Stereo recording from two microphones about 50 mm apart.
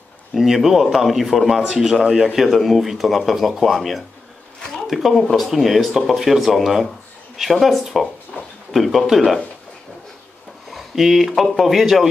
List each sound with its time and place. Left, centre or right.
0.3 s speech: centre
4.6 s a sound: centre
4.8 s speech: centre
8.3 s a sound: centre
8.7 s speech: centre
10.7 s speech: centre